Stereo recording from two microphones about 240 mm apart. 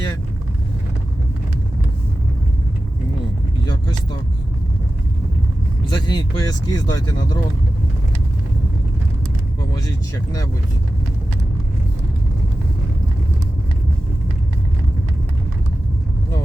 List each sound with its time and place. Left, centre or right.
5.9 s speech: centre